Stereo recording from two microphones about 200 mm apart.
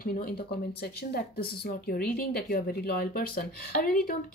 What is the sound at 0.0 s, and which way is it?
Speech, 45° left (ahead or behind).